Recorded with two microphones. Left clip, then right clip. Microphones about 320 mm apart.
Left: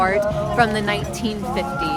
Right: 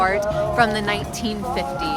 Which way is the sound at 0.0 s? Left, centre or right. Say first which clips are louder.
Left 1 dB; centre.